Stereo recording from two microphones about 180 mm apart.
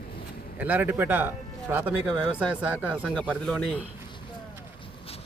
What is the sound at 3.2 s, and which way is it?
Speech, 5° left (ahead or behind).